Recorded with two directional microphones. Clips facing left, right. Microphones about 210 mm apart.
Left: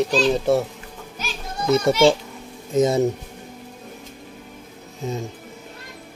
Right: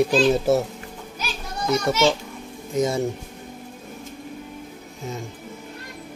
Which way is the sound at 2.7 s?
25° left (ahead or behind).